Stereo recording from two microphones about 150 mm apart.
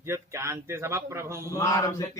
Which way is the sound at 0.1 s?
20° right (ahead or behind).